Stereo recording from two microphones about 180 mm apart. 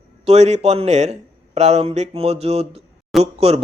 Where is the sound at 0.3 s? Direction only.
35° right (ahead or behind).